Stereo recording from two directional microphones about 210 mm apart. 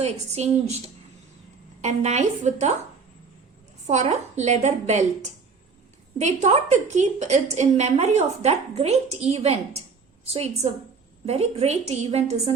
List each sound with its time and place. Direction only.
0.3 s a woman's voice: 30° right (ahead or behind)
1.8 s a woman's voice: 35° right (ahead or behind)
3.8 s a woman's voice: 30° right (ahead or behind)